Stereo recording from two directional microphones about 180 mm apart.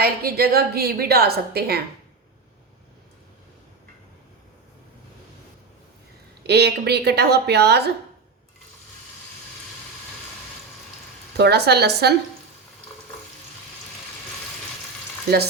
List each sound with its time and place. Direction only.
0.0 s a woman's voice: 55° right (ahead or behind)
6.5 s a woman's voice: 65° right (ahead or behind)
11.3 s speech: 65° right (ahead or behind)